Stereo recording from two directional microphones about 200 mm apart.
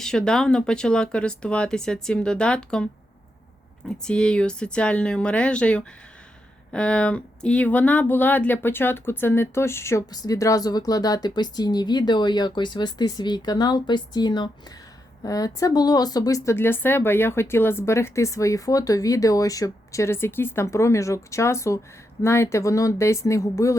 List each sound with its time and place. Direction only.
0.0 s speech: 5° left (ahead or behind)